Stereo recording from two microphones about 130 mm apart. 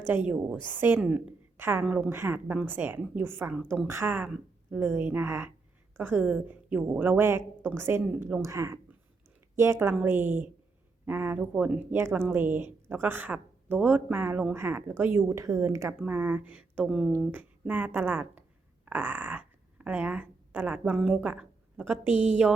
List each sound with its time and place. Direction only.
0.1 s a woman's voice: 10° right (ahead or behind)
1.5 s a woman's voice: 15° right (ahead or behind)
2.1 s a woman's voice: 20° right (ahead or behind)